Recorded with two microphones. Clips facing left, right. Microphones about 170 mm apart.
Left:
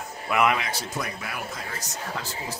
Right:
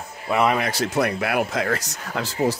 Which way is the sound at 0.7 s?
80° right.